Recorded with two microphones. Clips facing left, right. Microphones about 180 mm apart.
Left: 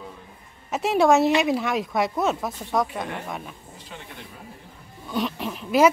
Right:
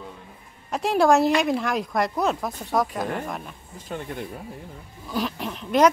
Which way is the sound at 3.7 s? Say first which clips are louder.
Right 8 dB; 50° right (ahead or behind).